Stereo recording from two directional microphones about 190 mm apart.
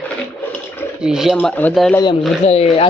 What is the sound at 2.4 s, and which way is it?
Speech, 35° left (ahead or behind).